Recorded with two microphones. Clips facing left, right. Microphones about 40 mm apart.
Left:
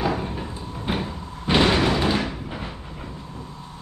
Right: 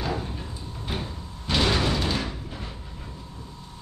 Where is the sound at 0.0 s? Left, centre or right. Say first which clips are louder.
Left 5 dB; left.